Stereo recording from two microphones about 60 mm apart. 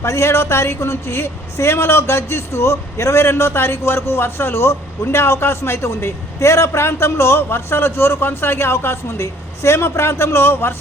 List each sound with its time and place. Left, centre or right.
0.0 s a man's voice: left